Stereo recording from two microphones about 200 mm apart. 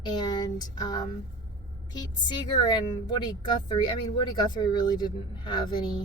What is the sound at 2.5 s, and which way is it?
Speech, 20° left (ahead or behind).